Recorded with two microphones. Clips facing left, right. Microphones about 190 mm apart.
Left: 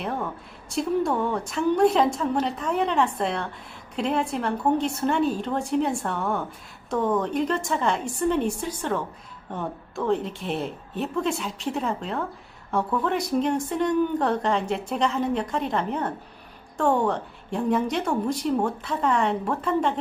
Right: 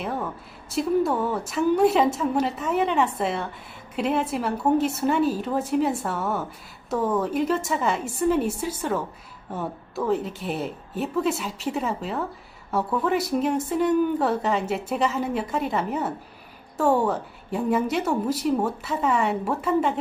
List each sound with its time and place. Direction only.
0.0 s a woman's voice: centre (ahead or behind)